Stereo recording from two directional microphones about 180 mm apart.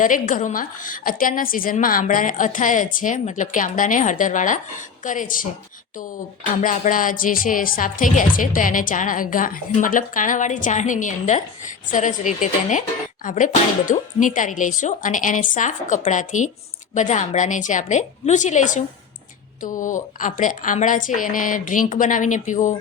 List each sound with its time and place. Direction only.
0.0 s speech: 45° left (ahead or behind)